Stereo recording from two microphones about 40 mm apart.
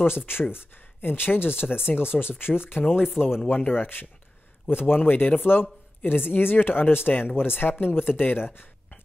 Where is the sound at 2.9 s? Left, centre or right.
Centre.